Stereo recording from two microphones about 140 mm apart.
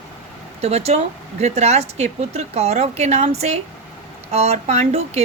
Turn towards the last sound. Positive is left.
turn(degrees=-50)  # may be behind; listen again after turning